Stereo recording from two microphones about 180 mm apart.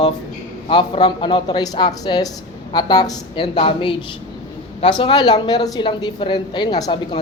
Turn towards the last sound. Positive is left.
turn(degrees=20)  # may be behind; listen again after turning